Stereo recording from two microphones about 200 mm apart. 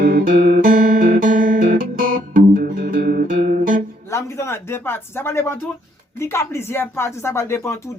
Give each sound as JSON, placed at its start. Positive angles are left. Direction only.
{"t": 0.0, "sound": "music", "side_deg": -45}
{"t": 4.1, "sound": "speech", "side_deg": 15}